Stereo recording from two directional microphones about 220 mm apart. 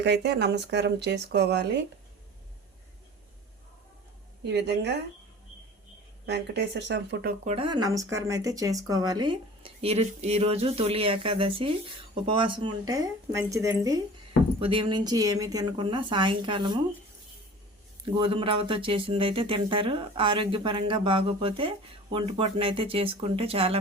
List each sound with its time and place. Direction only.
0.0 s speech: 50° right (ahead or behind)
4.4 s speech: 50° right (ahead or behind)
6.2 s speech: 50° right (ahead or behind)
7.4 s speech: 25° right (ahead or behind)
18.2 s speech: 25° right (ahead or behind)